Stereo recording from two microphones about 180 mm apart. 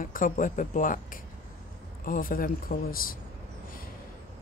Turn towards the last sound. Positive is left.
turn(degrees=55)  # may be behind; listen again after turning